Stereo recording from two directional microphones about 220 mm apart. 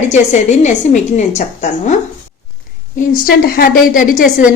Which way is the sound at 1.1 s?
30° left (ahead or behind).